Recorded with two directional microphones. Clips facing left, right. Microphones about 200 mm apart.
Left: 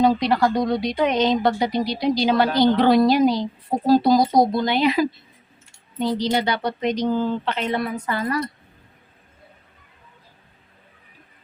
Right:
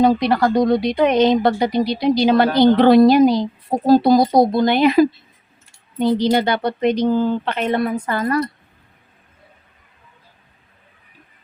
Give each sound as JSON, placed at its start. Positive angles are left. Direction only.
{"t": 0.0, "sound": "speech", "side_deg": -55}